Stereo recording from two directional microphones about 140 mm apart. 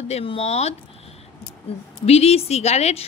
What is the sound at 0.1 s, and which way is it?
Speech, 45° left (ahead or behind).